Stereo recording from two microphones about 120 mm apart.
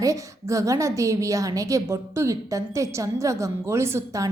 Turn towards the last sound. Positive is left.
turn(degrees=-25)  # may be behind; listen again after turning